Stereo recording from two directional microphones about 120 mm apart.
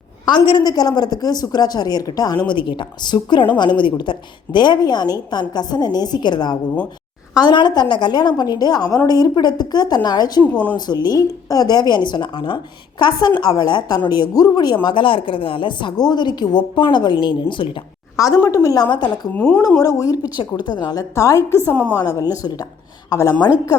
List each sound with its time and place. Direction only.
0.3 s a woman's voice: 40° left (ahead or behind)
10.4 s speech: 10° left (ahead or behind)
10.8 s a woman's voice: 35° left (ahead or behind)
18.4 s speech: 30° left (ahead or behind)
18.9 s a woman's voice: 40° left (ahead or behind)
19.4 s speech: 10° left (ahead or behind)
19.8 s a woman's voice: 30° left (ahead or behind)
21.2 s a woman's voice: 25° left (ahead or behind)